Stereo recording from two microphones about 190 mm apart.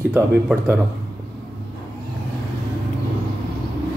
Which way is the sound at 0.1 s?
10° right (ahead or behind).